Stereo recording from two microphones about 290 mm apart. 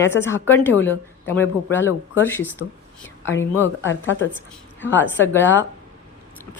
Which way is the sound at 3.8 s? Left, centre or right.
Left.